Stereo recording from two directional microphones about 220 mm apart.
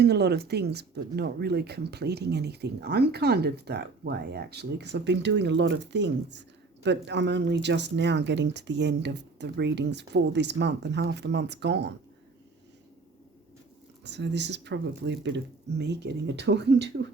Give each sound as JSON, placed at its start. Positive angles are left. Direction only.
{"t": 0.0, "sound": "speech", "side_deg": -50}
{"t": 14.0, "sound": "speech", "side_deg": -50}